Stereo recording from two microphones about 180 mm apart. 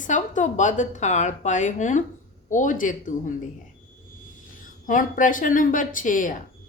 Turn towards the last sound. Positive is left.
turn(degrees=45)  # may be behind; listen again after turning